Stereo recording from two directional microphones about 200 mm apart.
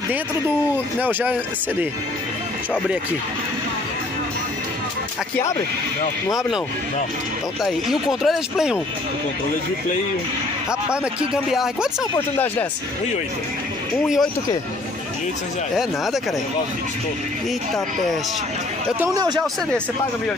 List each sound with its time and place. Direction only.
1.0 s speech: 10° right (ahead or behind)
7.6 s speech: centre (ahead or behind)
11.5 s speech: centre (ahead or behind)
14.0 s speech: centre (ahead or behind)
18.9 s speech: 20° right (ahead or behind)